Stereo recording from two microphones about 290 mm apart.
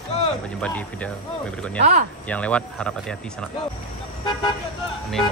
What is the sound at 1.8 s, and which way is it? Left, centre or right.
Speech, right.